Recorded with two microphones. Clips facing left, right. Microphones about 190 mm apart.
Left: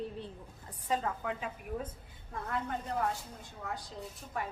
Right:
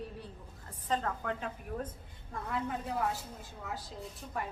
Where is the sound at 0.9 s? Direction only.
5° left (ahead or behind).